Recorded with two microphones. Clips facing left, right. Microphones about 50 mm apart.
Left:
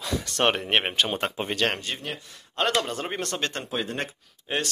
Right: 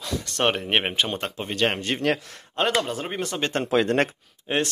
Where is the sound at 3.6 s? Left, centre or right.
Right.